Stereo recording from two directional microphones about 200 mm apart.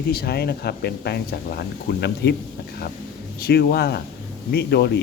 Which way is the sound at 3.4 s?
55° left (ahead or behind).